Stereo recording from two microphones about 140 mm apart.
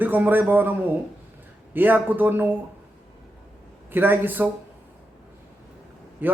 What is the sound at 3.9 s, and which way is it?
Speech, 15° right (ahead or behind).